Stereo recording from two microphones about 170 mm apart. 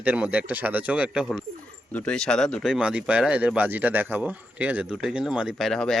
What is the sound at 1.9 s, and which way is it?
Speech, 10° left (ahead or behind).